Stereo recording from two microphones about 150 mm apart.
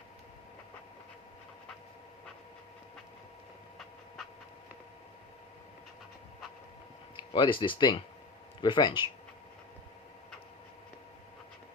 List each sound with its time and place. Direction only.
7.3 s speech: 35° left (ahead or behind)